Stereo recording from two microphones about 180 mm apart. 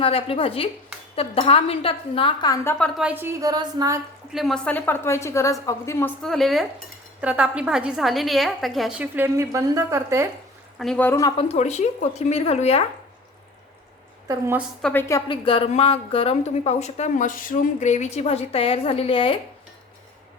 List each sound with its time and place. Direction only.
0.0 s speech: 30° left (ahead or behind)
3.0 s a woman's voice: 10° right (ahead or behind)
4.3 s a woman's voice: centre (ahead or behind)
6.2 s a woman's voice: centre (ahead or behind); by 10.2 s 15° right (ahead or behind)
10.8 s a woman's voice: 5° left (ahead or behind)
11.2 s speech: 25° left (ahead or behind)
14.3 s a woman's voice: 15° right (ahead or behind)
14.8 s speech: 5° left (ahead or behind)
15.3 s speech: 30° left (ahead or behind)